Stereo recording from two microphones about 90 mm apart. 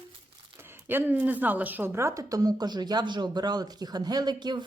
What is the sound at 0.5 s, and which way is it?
A woman's voice, 25° right (ahead or behind).